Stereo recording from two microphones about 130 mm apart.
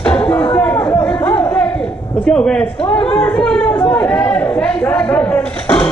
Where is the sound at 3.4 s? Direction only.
5° left (ahead or behind).